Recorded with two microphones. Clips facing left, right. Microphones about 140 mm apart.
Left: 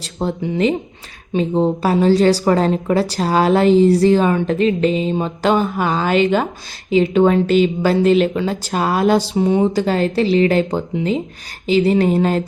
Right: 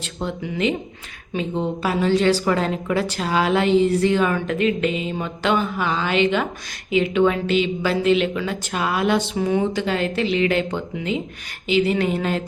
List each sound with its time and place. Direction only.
0.0 s a woman's voice: 35° left (ahead or behind)